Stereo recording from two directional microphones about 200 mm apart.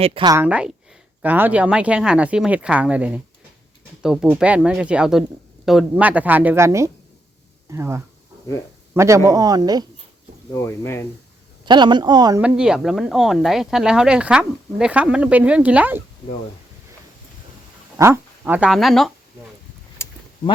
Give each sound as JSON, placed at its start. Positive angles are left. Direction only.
{"t": 0.0, "sound": "speech", "side_deg": -25}
{"t": 0.3, "sound": "speech", "side_deg": -5}
{"t": 10.5, "sound": "speech", "side_deg": 15}
{"t": 11.6, "sound": "speech", "side_deg": -20}
{"t": 12.4, "sound": "speech", "side_deg": -5}
{"t": 17.9, "sound": "speech", "side_deg": -15}
{"t": 20.0, "sound": "a sound", "side_deg": 15}